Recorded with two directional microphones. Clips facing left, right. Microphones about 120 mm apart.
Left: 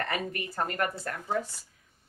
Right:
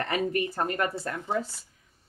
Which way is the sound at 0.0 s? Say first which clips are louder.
Right 5 dB; 25° right (ahead or behind).